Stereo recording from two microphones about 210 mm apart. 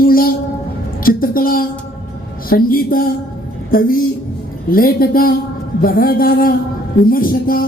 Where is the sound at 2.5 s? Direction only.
45° left (ahead or behind).